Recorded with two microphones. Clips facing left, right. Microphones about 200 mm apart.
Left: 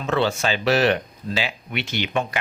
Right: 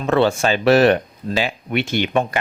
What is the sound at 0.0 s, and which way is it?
Speech, 55° right (ahead or behind).